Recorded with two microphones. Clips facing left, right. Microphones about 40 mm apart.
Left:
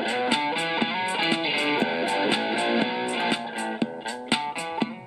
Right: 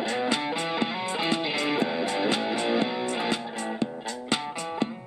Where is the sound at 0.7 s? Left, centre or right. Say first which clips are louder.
Left 3 dB; left.